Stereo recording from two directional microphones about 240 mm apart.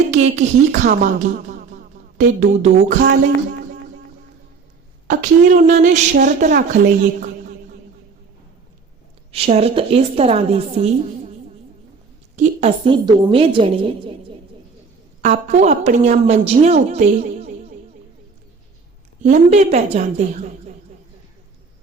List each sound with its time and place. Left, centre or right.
0.1 s a woman's voice: right
5.1 s a woman's voice: right
9.3 s a woman's voice: right
12.4 s a woman's voice: right
15.2 s a woman's voice: right
19.2 s a woman's voice: right